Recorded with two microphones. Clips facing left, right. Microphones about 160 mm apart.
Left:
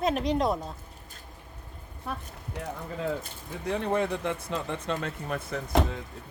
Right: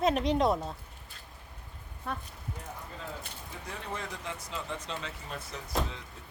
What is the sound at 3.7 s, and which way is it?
Speech, 65° left (ahead or behind).